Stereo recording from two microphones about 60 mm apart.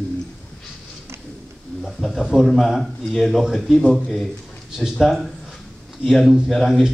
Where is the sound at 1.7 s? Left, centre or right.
Centre.